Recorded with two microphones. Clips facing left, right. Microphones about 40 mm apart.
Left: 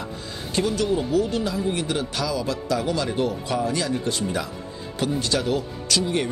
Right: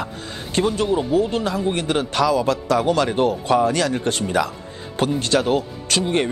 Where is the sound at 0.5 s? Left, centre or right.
Right.